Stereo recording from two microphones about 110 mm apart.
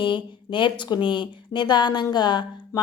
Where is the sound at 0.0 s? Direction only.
50° left (ahead or behind).